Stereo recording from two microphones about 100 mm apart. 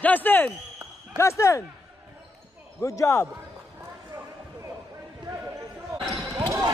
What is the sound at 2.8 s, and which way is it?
Speech, 30° left (ahead or behind).